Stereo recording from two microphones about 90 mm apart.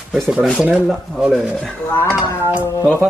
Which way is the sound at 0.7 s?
Centre (ahead or behind).